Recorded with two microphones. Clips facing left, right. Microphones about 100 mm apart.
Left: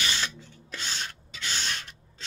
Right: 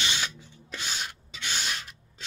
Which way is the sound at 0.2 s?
15° right (ahead or behind).